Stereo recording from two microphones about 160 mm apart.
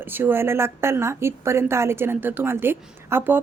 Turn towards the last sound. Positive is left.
turn(degrees=-15)  # may be behind; listen again after turning